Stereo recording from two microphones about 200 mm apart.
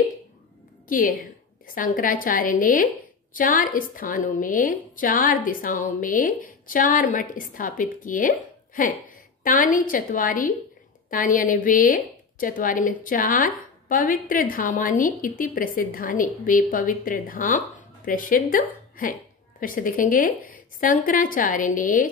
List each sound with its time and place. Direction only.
0.8 s a woman's voice: 40° left (ahead or behind)